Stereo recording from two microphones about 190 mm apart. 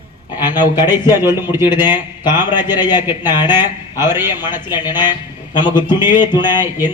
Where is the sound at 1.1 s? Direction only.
10° right (ahead or behind).